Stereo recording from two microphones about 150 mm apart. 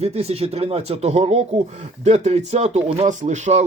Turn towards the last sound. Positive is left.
turn(degrees=-50)  # may be behind; listen again after turning